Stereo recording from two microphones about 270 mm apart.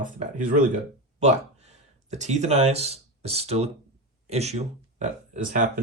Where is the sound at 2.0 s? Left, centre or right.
Right.